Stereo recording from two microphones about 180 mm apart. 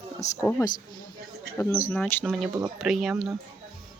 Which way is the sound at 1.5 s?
15° left (ahead or behind).